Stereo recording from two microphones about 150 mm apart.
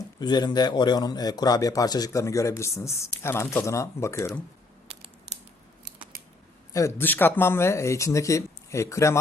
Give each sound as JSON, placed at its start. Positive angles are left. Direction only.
{"t": 0.2, "sound": "a man's voice", "side_deg": 30}
{"t": 6.7, "sound": "a man's voice", "side_deg": 15}